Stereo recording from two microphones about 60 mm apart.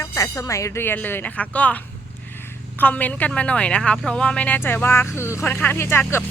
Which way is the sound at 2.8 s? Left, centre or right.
Left.